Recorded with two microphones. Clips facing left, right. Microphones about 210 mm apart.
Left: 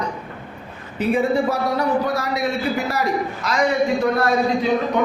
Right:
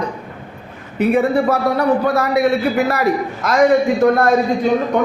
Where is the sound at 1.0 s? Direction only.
60° right (ahead or behind).